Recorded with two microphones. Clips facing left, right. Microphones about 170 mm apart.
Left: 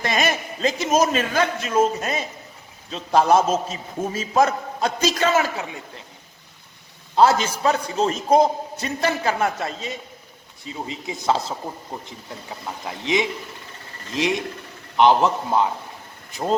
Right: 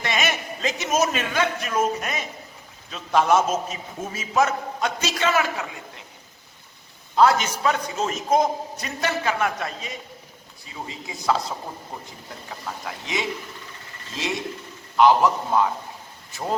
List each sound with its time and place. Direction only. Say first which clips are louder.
0.0 s a man's voice: left 3 dB; 35° left (ahead or behind)
1.6 s a man's voice: left 4 dB; 25° left (ahead or behind)
7.2 s a man's voice: left 1 dB; 30° left (ahead or behind)
14.9 s speech: even; 25° left (ahead or behind)